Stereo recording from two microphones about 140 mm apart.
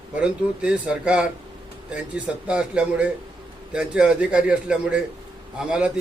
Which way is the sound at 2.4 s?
5° right (ahead or behind).